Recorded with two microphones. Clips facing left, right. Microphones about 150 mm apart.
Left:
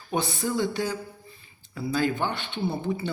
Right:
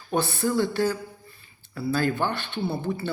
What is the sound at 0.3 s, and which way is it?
A man's voice, 15° left (ahead or behind).